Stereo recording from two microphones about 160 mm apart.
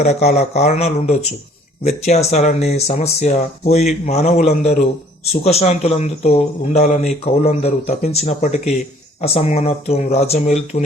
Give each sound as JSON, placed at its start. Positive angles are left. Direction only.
{"t": 0.0, "sound": "speech", "side_deg": 45}